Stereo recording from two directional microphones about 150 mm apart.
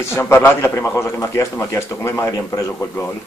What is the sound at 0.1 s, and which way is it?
A man's voice, 15° left (ahead or behind).